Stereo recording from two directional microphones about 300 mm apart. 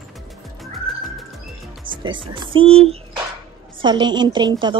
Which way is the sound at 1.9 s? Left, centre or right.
Centre.